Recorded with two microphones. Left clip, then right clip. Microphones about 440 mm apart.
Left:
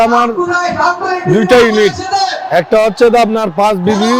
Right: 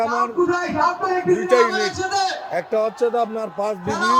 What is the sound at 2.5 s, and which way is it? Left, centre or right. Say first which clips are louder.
A man's voice: left 14 dB; left.